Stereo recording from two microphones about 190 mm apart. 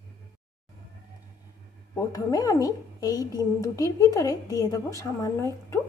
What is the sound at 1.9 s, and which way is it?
A woman's voice, 20° left (ahead or behind).